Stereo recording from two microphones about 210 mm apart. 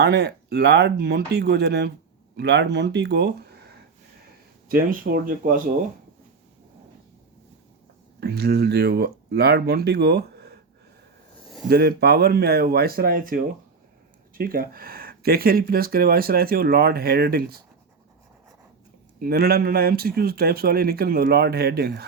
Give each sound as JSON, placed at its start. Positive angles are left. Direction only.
{"t": 0.0, "sound": "speech", "side_deg": -55}
{"t": 4.7, "sound": "speech", "side_deg": -40}
{"t": 8.2, "sound": "speech", "side_deg": -50}
{"t": 11.7, "sound": "speech", "side_deg": -50}
{"t": 19.2, "sound": "speech", "side_deg": -45}